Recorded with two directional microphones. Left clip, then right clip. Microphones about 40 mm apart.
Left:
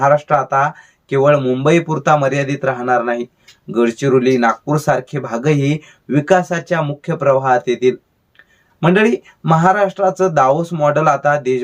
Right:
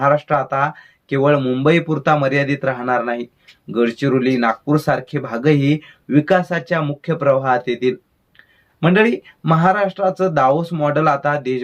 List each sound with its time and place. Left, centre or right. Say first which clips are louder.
0.0 s speech: left 3 dB; left
1.3 s speech: left 2 dB; centre